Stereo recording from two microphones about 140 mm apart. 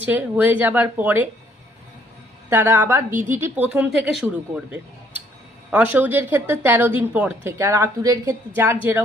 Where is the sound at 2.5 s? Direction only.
15° right (ahead or behind).